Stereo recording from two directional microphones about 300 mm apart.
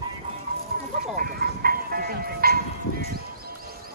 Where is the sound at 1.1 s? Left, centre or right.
Right.